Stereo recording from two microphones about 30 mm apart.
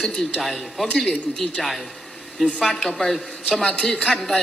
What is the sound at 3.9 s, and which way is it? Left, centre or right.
Speech, left.